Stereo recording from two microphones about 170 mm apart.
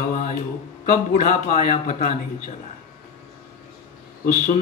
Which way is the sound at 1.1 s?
50° left (ahead or behind).